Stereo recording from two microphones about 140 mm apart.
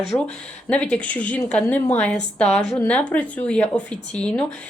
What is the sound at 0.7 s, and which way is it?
Speech, 10° left (ahead or behind).